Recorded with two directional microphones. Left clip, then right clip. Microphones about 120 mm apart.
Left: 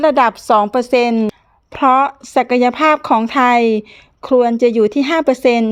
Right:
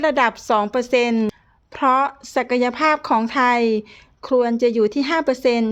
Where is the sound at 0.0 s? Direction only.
35° left (ahead or behind).